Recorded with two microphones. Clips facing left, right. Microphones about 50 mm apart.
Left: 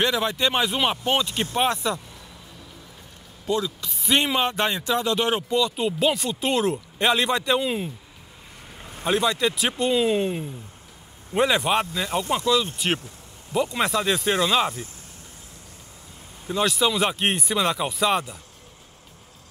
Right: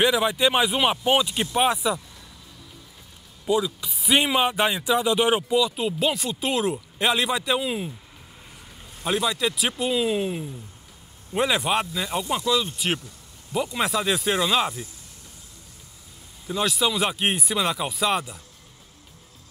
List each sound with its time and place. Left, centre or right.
0.0 s speech: centre
3.4 s speech: centre
9.0 s speech: centre
16.4 s speech: centre